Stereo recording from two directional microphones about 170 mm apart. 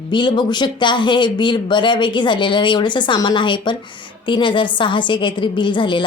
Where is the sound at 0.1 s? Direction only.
25° left (ahead or behind).